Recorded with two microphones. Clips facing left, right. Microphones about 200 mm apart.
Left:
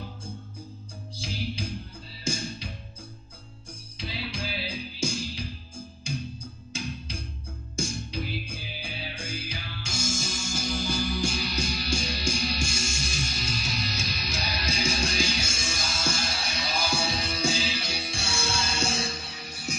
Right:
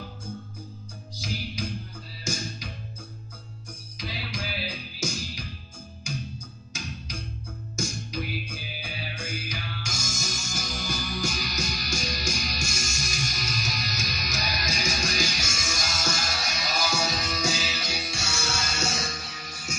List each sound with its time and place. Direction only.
1.1 s music: 30° left (ahead or behind)
4.0 s music: 30° left (ahead or behind)